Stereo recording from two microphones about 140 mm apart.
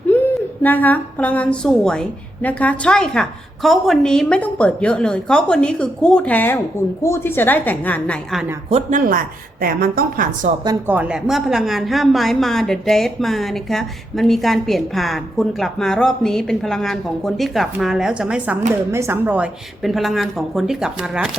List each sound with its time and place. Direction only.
0.1 s a sound: 15° left (ahead or behind)
0.6 s a woman's voice: 10° left (ahead or behind)
8.9 s a woman's voice: 80° right
10.8 s a woman's voice: 10° right (ahead or behind)
18.7 s speech: 20° right (ahead or behind)
19.8 s a woman's voice: centre (ahead or behind)